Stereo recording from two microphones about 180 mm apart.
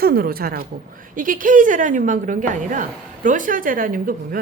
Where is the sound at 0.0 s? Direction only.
55° right (ahead or behind).